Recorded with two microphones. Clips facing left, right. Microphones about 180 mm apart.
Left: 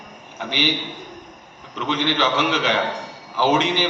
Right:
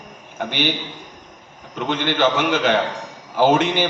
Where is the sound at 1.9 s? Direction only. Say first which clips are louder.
Right 2 dB; 50° right (ahead or behind).